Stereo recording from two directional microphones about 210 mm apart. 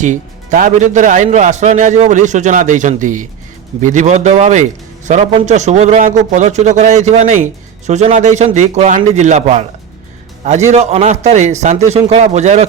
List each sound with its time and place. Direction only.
0.0 s a man's voice: 35° right (ahead or behind)
10.7 s a man's voice: 30° right (ahead or behind)